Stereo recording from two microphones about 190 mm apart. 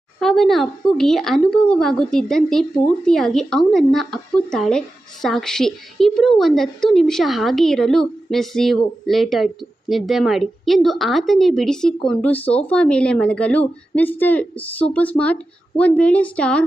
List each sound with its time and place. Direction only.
0.2 s a woman's voice: centre (ahead or behind)